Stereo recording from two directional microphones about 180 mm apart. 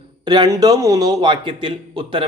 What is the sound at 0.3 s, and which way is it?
A man's voice, 20° right (ahead or behind).